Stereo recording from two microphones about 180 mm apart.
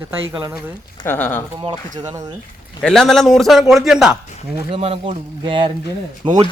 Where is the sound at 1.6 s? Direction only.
25° right (ahead or behind).